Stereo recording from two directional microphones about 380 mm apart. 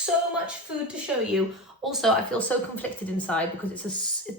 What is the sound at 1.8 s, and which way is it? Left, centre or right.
A woman's voice, centre.